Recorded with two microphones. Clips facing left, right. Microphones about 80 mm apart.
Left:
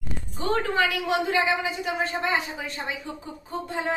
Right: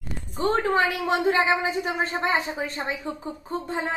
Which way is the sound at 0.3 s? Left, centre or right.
Right.